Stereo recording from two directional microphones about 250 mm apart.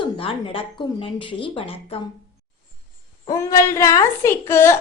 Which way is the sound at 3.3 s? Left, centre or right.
Centre.